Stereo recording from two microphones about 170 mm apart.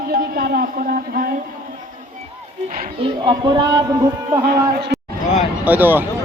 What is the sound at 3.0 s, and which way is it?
Speech, 30° right (ahead or behind).